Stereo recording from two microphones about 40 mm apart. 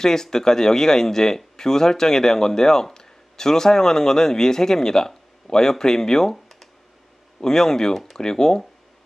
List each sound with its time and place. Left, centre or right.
0.0 s speech: centre